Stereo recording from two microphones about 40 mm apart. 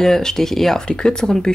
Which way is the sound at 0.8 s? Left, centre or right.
Centre.